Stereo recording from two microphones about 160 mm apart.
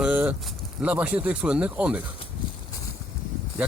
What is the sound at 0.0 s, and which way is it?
Speech, 5° right (ahead or behind).